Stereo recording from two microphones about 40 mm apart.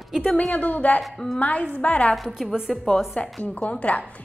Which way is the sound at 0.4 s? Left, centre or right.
Left.